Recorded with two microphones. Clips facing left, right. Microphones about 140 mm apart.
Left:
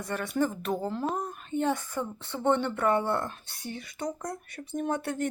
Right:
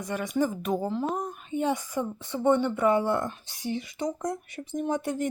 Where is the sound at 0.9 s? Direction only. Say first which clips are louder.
Right 2 dB; centre (ahead or behind).